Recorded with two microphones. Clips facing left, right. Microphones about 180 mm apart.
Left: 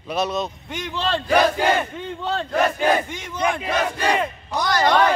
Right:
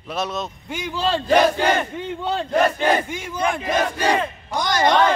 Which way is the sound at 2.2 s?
10° right (ahead or behind).